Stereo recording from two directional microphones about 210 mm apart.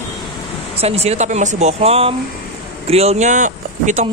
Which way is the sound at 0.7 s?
30° right (ahead or behind).